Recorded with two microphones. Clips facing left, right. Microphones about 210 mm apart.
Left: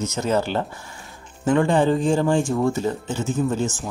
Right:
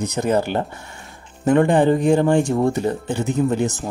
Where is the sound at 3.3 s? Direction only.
20° right (ahead or behind).